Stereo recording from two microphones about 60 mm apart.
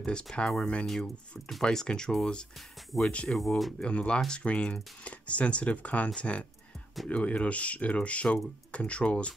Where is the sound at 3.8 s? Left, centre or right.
Centre.